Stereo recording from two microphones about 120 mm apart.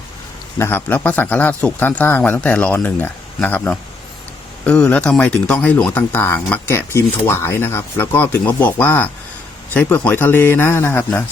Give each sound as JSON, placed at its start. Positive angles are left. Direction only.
{"t": 0.6, "sound": "speech", "side_deg": 15}